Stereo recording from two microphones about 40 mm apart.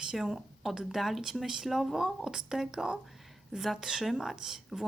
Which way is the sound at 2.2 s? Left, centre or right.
Centre.